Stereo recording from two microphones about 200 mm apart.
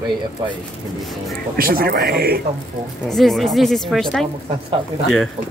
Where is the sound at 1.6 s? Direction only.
50° right (ahead or behind).